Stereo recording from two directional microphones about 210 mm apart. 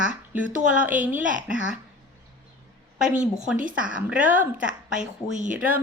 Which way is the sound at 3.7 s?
5° right (ahead or behind).